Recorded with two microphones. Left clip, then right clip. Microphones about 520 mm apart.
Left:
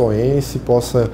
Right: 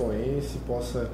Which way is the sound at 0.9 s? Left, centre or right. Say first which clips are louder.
Left 15 dB; left.